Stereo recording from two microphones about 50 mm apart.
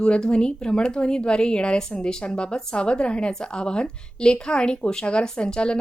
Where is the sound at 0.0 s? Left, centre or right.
Left.